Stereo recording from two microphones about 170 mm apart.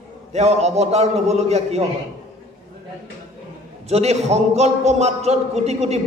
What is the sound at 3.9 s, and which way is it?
A man's voice, 40° right (ahead or behind).